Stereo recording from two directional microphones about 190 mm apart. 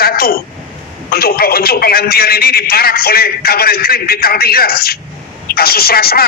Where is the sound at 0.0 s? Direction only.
55° left (ahead or behind).